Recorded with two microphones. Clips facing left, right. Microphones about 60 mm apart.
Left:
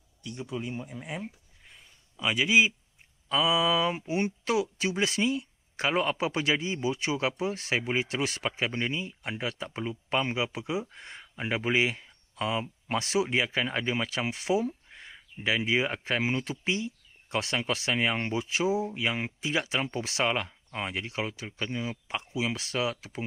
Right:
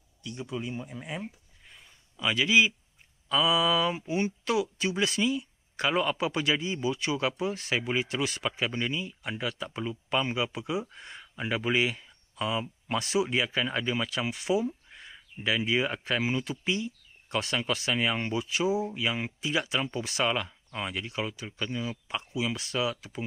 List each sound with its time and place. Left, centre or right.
0.2 s speech: left
2.1 s a man's voice: centre